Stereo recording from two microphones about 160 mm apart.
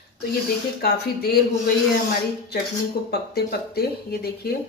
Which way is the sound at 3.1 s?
85° left.